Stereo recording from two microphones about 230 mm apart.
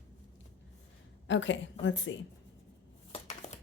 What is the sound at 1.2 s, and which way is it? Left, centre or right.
Speech, left.